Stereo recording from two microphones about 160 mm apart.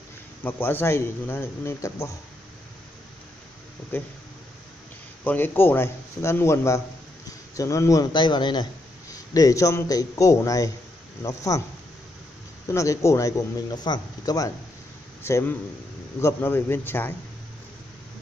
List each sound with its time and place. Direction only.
0.4 s a man's voice: 10° left (ahead or behind)
3.9 s a man's voice: 10° left (ahead or behind)
5.2 s a man's voice: 10° left (ahead or behind)
12.6 s a man's voice: 20° left (ahead or behind)